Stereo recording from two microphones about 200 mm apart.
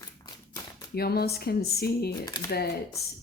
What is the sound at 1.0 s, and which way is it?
Speech, 50° left (ahead or behind).